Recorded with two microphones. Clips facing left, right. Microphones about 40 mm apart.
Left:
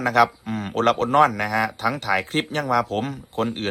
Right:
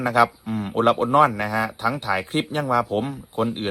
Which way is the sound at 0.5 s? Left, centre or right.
Centre.